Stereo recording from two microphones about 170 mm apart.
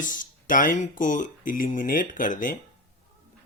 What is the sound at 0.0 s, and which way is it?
Speech, 50° left (ahead or behind).